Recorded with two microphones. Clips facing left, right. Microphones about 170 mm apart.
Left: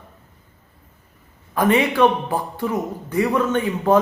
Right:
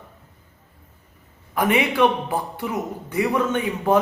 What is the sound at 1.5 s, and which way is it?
Speech, 10° right (ahead or behind).